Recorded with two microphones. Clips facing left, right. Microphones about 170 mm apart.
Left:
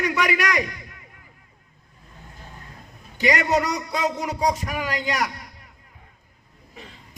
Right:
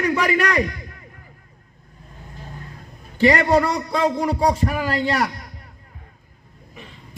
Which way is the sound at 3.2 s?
35° right (ahead or behind).